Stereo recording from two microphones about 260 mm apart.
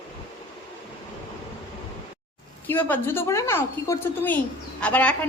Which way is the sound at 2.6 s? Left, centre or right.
Centre.